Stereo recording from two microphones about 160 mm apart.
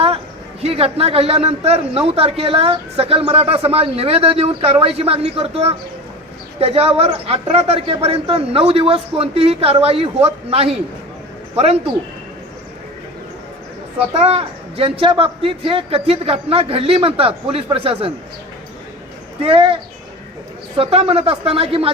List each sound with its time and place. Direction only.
0.6 s a man's voice: 35° right (ahead or behind)
14.8 s a man's voice: 35° right (ahead or behind)
19.4 s a man's voice: 35° right (ahead or behind)
20.7 s a man's voice: 35° right (ahead or behind)